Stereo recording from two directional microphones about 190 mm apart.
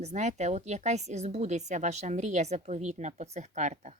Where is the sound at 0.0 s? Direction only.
35° right (ahead or behind).